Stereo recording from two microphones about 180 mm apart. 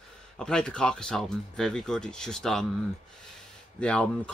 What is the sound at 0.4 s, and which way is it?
Speech, 5° left (ahead or behind).